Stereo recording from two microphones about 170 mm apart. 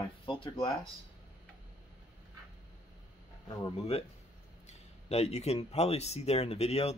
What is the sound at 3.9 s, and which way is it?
Speech, 40° left (ahead or behind).